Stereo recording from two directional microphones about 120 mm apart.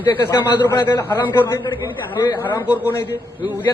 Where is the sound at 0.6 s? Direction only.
20° left (ahead or behind).